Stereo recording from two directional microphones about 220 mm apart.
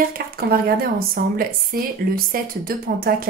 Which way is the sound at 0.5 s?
45° right (ahead or behind).